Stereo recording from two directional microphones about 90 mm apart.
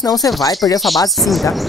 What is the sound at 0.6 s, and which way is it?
Speech, 35° left (ahead or behind).